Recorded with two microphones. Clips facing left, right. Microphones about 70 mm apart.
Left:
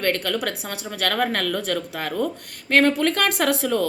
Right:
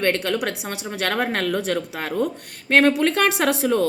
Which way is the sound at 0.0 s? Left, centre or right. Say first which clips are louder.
Right 2 dB; right.